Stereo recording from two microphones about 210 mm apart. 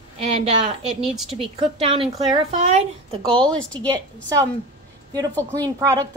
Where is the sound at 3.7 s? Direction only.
20° right (ahead or behind).